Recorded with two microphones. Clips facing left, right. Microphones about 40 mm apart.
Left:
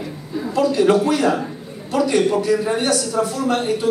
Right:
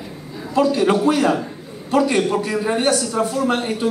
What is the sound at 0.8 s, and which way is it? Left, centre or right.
Speech, right.